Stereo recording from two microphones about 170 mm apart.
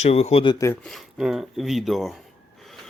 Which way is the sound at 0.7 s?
Centre (ahead or behind).